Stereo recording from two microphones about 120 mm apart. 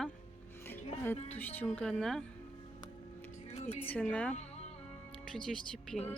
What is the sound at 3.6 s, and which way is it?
Speech, 60° left (ahead or behind).